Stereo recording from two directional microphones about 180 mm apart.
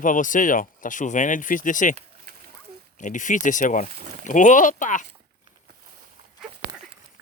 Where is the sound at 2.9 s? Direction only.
45° left (ahead or behind).